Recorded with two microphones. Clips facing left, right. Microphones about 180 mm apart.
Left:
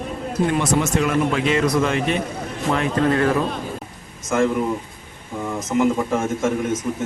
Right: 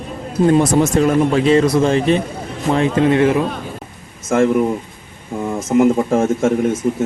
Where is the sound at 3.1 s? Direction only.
20° right (ahead or behind).